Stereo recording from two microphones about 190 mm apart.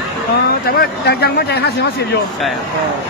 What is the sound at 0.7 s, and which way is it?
A man's voice, 55° left (ahead or behind).